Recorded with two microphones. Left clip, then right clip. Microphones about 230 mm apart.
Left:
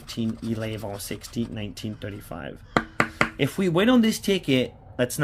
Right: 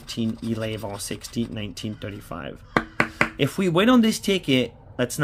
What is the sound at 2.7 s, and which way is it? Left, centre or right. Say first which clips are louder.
Chopping: right 1 dB; centre.